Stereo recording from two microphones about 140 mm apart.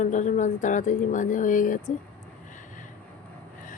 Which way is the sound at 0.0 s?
60° left (ahead or behind).